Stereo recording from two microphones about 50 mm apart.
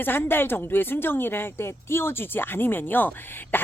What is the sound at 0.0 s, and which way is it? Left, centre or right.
Speech, left.